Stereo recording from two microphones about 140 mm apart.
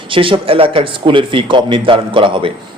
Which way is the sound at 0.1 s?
40° right (ahead or behind).